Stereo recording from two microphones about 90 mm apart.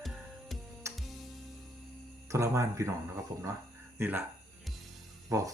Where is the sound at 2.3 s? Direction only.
35° right (ahead or behind).